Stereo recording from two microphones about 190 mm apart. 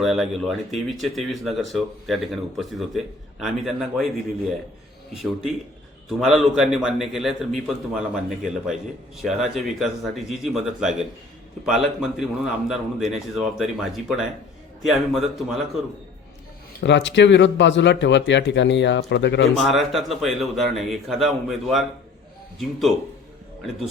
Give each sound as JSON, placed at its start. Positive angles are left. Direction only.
{"t": 0.0, "sound": "a man's voice", "side_deg": 0}
{"t": 6.1, "sound": "a man's voice", "side_deg": 0}
{"t": 16.8, "sound": "speech", "side_deg": 70}
{"t": 19.5, "sound": "a man's voice", "side_deg": 0}